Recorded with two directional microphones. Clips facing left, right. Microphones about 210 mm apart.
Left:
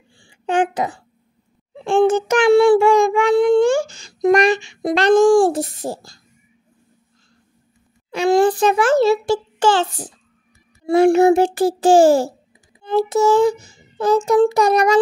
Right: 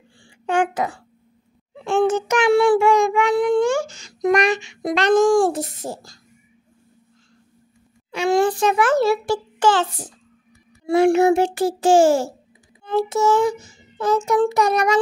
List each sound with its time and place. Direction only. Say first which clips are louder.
0.2 s a sound: left 2 dB; 20° left (ahead or behind)
1.9 s child singing: left 3 dB; 30° left (ahead or behind)
8.1 s a child's voice: left 3 dB; 35° left (ahead or behind)
10.9 s child singing: left 3 dB; 35° left (ahead or behind)